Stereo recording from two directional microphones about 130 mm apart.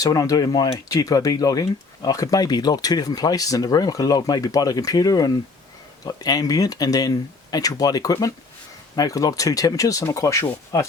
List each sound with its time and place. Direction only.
0.0 s speech: 25° left (ahead or behind)